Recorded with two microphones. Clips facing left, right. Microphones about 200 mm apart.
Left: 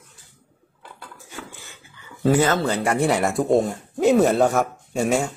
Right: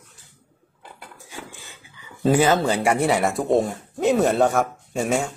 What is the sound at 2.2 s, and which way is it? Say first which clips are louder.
Speech: right 1 dB; 15° right (ahead or behind).